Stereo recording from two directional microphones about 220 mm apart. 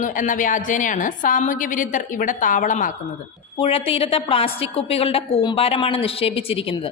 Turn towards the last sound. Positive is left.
turn(degrees=25)  # may be behind; listen again after turning